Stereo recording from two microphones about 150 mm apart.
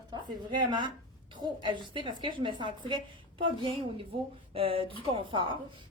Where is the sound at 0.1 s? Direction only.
30° right (ahead or behind).